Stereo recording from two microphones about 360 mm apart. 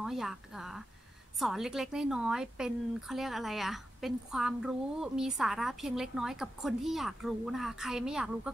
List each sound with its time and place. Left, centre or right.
0.0 s speech: centre